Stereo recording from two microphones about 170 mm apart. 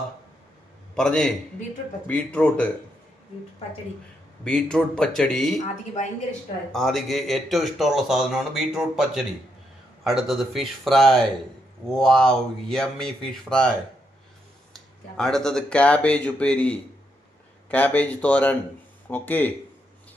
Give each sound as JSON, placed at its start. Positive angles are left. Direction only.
{"t": 0.9, "sound": "speech", "side_deg": 5}
{"t": 4.4, "sound": "speech", "side_deg": 5}
{"t": 6.7, "sound": "speech", "side_deg": 0}
{"t": 15.2, "sound": "speech", "side_deg": 5}